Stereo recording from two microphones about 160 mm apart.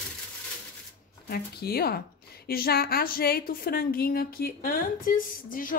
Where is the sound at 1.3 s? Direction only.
75° left (ahead or behind).